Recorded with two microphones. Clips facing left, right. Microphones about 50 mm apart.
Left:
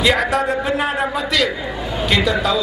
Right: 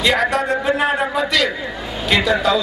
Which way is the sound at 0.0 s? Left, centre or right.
Centre.